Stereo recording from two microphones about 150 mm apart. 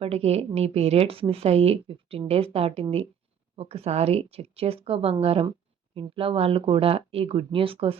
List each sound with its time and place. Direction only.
0.0 s speech: 45° right (ahead or behind)